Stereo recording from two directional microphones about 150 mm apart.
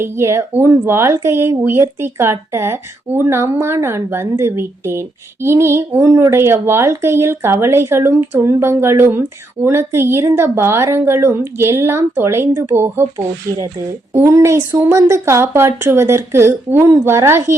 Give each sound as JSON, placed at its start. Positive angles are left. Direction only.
{"t": 0.0, "sound": "speech", "side_deg": -20}